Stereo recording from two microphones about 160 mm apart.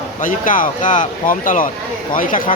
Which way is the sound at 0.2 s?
55° left (ahead or behind).